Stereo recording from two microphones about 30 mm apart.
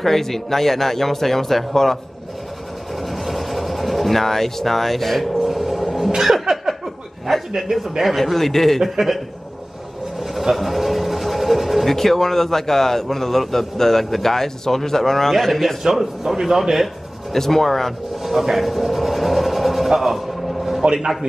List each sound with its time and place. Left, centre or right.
0.0 s a man's voice: centre
3.0 s vehicle: centre
7.3 s a sound: centre
8.0 s a man's voice: centre
8.8 s a man's voice: centre
10.5 s a sound: centre
11.9 s a man's voice: centre
15.9 s a man's voice: centre
16.8 s speech: centre
18.6 s a sound: centre
20.8 s a man's voice: right